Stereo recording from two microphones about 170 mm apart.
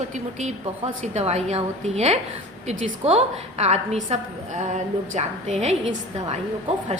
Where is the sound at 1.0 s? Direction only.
40° right (ahead or behind).